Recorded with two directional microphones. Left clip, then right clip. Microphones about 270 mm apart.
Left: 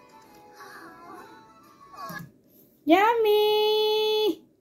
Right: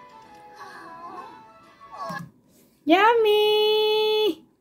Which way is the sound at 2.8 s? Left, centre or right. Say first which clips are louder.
Right 3 dB; centre.